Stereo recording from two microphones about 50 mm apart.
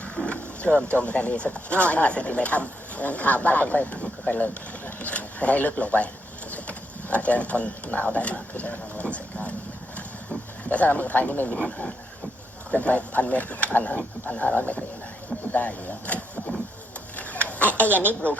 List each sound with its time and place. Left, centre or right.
0.2 s a sound: left
0.7 s speech: centre
1.0 s speech: left
9.1 s vehicle: left
10.7 s speech: left
12.7 s speech: left
17.2 s a sound: left